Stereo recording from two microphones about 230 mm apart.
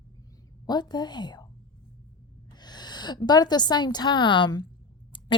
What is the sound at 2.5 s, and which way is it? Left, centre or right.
A woman's voice, centre.